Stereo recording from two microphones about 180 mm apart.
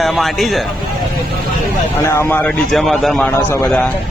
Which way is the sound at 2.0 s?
15° left (ahead or behind).